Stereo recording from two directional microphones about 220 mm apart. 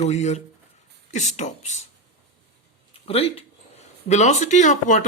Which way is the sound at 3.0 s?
25° left (ahead or behind).